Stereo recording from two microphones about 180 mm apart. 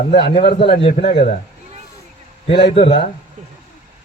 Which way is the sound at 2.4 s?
35° left (ahead or behind).